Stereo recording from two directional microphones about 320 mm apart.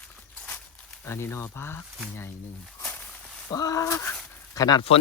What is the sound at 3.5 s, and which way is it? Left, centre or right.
Speech, centre.